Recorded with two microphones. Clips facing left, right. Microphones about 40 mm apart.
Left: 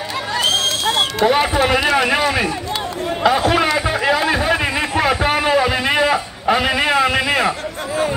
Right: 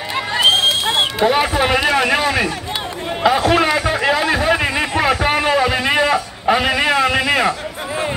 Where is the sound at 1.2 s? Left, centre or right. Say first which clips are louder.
Left 1 dB; centre.